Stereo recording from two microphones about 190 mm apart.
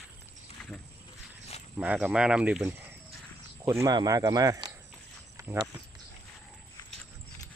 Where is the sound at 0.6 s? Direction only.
5° left (ahead or behind).